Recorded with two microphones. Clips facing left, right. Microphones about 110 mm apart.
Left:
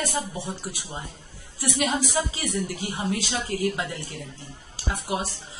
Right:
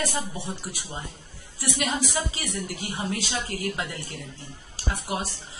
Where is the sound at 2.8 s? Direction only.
25° left (ahead or behind).